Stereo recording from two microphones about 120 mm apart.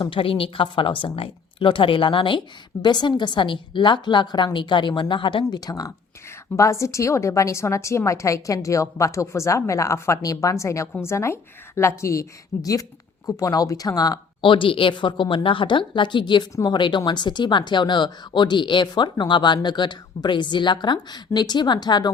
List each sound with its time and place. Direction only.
0.0 s a woman's voice: 45° left (ahead or behind)